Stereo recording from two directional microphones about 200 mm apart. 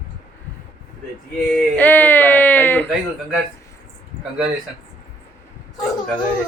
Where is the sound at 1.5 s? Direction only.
10° left (ahead or behind).